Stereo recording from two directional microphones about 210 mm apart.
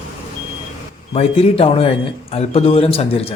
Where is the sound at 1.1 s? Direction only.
30° left (ahead or behind).